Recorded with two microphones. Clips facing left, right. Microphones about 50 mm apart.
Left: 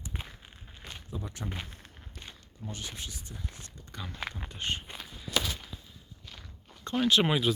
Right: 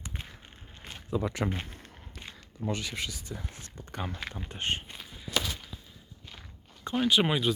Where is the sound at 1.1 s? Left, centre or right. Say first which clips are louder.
Right 11 dB; right.